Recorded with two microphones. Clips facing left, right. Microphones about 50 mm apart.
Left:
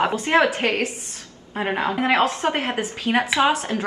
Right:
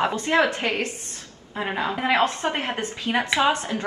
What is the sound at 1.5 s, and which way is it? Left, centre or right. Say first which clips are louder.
Speech: left 3 dB; centre.